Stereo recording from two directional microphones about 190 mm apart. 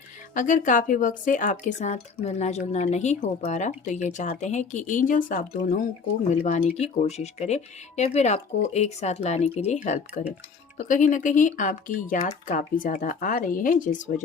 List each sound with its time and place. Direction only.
0.3 s speech: 45° left (ahead or behind)